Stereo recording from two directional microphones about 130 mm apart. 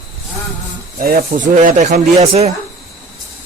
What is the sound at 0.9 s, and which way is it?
Speech, 90° right.